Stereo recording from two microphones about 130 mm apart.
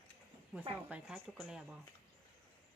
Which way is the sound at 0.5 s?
5° right (ahead or behind).